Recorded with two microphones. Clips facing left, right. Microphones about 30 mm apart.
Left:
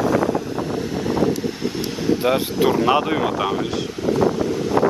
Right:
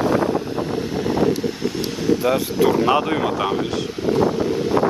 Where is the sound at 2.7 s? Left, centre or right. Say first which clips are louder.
Even; centre.